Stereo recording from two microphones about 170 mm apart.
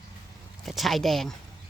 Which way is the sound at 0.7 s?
Centre (ahead or behind).